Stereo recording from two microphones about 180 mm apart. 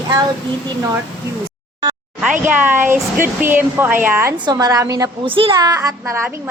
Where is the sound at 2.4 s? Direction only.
10° right (ahead or behind).